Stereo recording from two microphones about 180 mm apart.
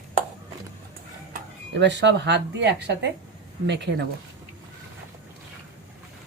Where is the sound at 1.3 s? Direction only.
75° right (ahead or behind).